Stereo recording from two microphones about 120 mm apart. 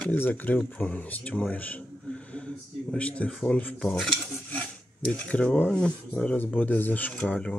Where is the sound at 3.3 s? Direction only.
5° left (ahead or behind).